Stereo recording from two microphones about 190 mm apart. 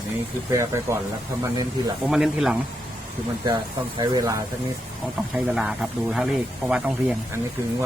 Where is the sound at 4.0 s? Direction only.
20° right (ahead or behind).